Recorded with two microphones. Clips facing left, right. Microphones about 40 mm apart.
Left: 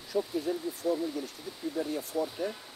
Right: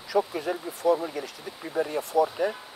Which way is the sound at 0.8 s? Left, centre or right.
Right.